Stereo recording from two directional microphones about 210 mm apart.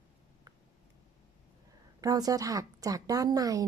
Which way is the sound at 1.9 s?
15° right (ahead or behind).